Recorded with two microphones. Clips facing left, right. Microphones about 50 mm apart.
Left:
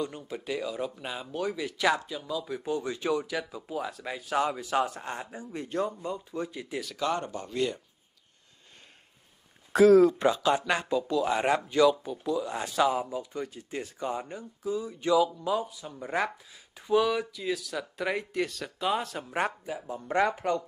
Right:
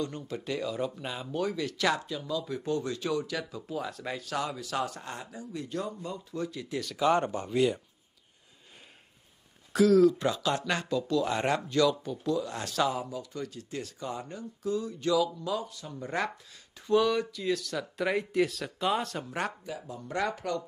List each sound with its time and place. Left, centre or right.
0.0 s speech: centre
4.2 s speech: left
6.0 s speech: left
7.2 s speech: right
7.5 s speech: centre
9.8 s speech: left
10.2 s speech: centre
11.7 s speech: centre
14.6 s speech: centre
20.3 s speech: left